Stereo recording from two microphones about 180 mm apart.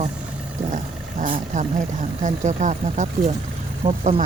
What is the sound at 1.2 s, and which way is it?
Speech, 45° right (ahead or behind).